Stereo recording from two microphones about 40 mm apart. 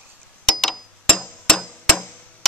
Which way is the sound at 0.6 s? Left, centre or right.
Centre.